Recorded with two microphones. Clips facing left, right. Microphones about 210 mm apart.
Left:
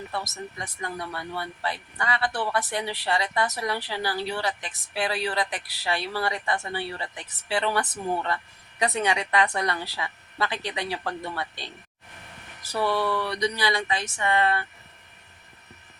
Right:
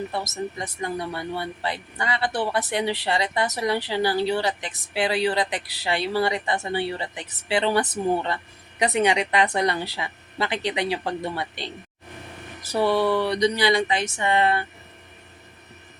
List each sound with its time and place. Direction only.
0.6 s speech: 20° right (ahead or behind)